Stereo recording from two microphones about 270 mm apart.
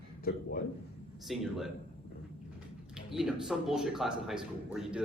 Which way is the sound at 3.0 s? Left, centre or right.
Centre.